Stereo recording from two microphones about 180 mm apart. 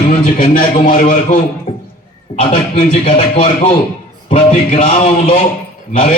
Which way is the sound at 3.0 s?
30° left (ahead or behind).